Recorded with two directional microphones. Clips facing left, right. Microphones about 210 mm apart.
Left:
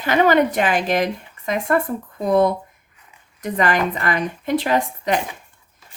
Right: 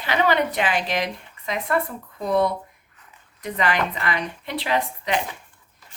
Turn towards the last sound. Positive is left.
turn(degrees=45)  # may be behind; listen again after turning